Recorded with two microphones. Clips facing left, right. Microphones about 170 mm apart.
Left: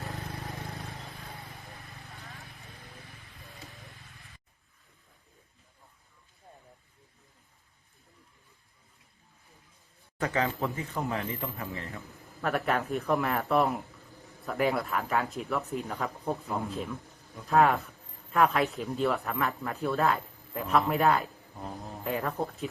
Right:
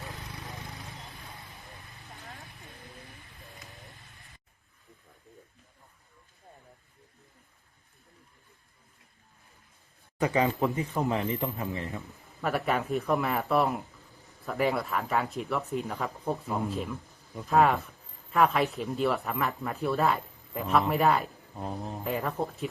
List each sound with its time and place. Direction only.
0.2 s vehicle: 60° left (ahead or behind)
10.2 s a man's voice: 15° right (ahead or behind)
12.0 s a man's voice: centre (ahead or behind)
21.5 s speech: 20° right (ahead or behind)
22.0 s a man's voice: centre (ahead or behind)